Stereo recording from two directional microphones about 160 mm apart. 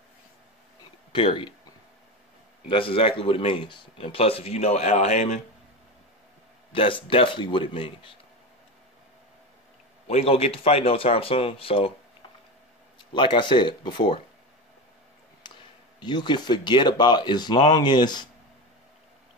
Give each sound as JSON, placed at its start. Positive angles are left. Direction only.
{"t": 1.1, "sound": "speech", "side_deg": 30}
{"t": 2.7, "sound": "speech", "side_deg": 35}
{"t": 6.7, "sound": "speech", "side_deg": 35}
{"t": 10.0, "sound": "speech", "side_deg": 40}
{"t": 13.1, "sound": "speech", "side_deg": 30}
{"t": 15.4, "sound": "a sound", "side_deg": 30}
{"t": 16.0, "sound": "speech", "side_deg": 30}